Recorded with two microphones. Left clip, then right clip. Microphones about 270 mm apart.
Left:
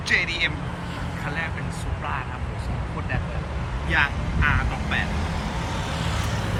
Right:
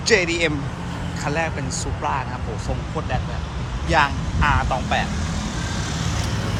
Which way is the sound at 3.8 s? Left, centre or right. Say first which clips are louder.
Right 4 dB; centre.